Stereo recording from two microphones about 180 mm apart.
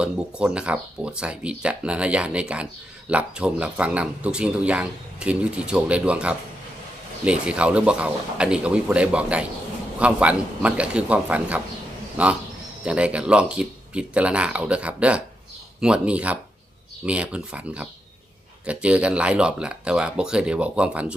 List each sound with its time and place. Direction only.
0.0 s speech: 5° right (ahead or behind)